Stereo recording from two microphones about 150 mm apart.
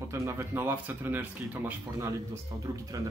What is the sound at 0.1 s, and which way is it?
Speech, 20° right (ahead or behind).